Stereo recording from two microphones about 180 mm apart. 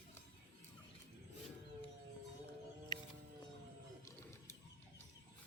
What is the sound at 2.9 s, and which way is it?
Music, 25° left (ahead or behind).